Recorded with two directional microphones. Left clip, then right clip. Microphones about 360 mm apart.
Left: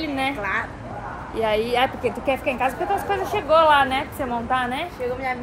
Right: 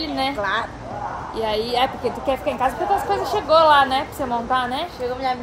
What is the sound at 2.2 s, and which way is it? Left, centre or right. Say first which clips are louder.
A woman's voice: right 2 dB; centre.